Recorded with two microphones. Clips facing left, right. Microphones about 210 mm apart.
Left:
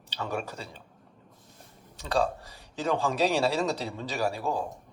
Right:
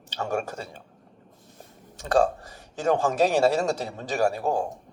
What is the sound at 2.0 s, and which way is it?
Speech, 50° right (ahead or behind).